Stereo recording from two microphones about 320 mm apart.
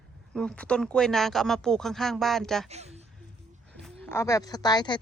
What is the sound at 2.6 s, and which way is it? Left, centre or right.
Speech, centre.